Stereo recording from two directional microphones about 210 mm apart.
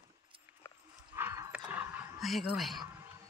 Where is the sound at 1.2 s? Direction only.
10° right (ahead or behind).